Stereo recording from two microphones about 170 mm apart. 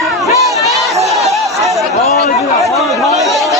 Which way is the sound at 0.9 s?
20° right (ahead or behind).